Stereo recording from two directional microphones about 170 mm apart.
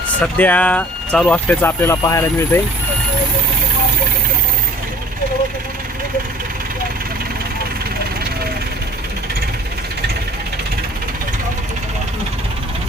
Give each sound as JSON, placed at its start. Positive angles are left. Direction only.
{"t": 0.2, "sound": "speech", "side_deg": 10}